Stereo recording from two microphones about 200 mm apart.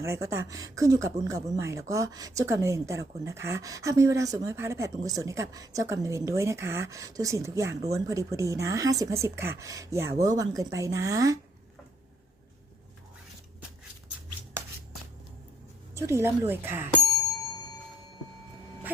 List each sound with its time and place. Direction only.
0.0 s speech: 15° right (ahead or behind)
16.0 s speech: 15° right (ahead or behind)